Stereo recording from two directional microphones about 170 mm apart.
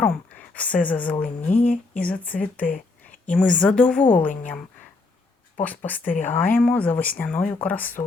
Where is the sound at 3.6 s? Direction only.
5° left (ahead or behind).